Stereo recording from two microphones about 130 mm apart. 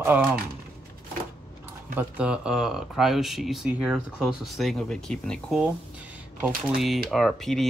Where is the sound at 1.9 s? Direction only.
10° right (ahead or behind).